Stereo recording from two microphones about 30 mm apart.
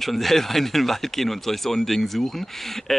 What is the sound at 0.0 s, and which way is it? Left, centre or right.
Speech, centre.